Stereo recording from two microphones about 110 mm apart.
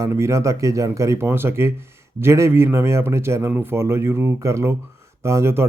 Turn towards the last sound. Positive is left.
turn(degrees=-25)  # may be behind; listen again after turning